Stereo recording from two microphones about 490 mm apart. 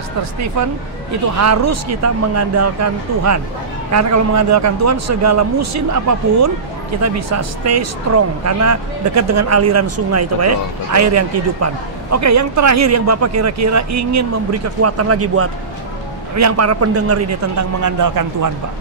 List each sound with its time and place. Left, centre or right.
1.4 s a man's voice: right